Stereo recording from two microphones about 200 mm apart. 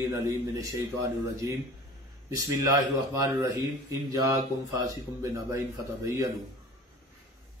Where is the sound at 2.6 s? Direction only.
15° right (ahead or behind).